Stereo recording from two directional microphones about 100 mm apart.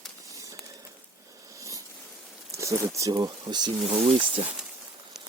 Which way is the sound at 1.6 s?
35° right (ahead or behind).